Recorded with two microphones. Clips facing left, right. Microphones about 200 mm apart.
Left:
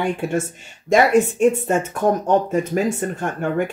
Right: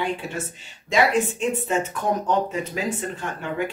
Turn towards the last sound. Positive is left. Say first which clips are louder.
# left 6 dB
turn(degrees=50)  # may be behind; listen again after turning